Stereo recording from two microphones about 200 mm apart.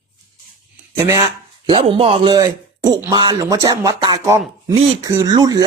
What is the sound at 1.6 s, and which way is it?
Speech, 25° right (ahead or behind).